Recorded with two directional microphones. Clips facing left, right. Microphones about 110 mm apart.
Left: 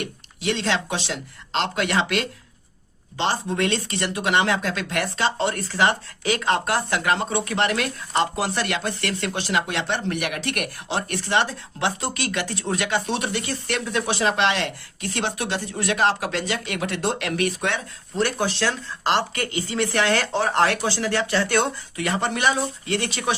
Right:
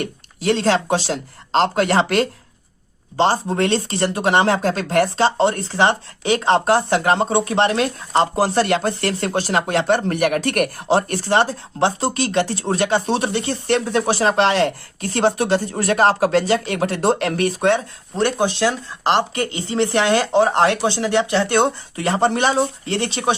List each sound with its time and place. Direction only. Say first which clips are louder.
0.0 s speech: right 5 dB; 40° right (ahead or behind)
18.2 s speech: right 5 dB; 20° right (ahead or behind)